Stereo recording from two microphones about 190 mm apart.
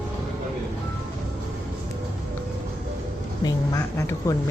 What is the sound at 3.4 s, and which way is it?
Speech, 20° left (ahead or behind).